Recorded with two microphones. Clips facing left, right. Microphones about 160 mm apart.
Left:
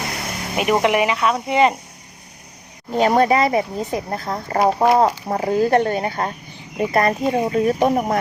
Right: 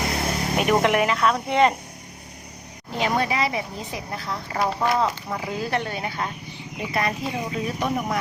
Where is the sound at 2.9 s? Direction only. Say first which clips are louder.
Left 8 dB; 45° left (ahead or behind).